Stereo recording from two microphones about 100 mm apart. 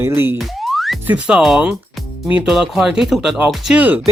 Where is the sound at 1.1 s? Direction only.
10° right (ahead or behind).